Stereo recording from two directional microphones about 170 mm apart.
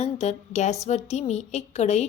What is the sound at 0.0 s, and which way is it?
A woman's voice, 40° left (ahead or behind).